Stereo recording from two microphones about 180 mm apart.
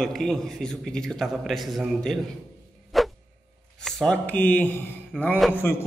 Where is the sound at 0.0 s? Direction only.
Centre (ahead or behind).